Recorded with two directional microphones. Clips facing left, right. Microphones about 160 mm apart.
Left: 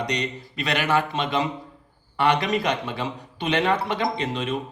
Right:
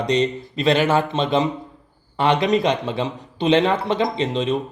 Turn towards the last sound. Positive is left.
turn(degrees=-25)  # may be behind; listen again after turning